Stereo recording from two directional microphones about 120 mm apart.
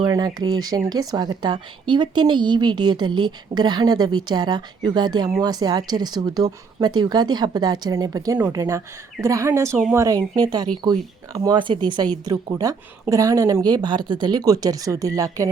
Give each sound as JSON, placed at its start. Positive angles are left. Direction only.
{"t": 0.0, "sound": "speech", "side_deg": -30}
{"t": 11.5, "sound": "speech", "side_deg": -40}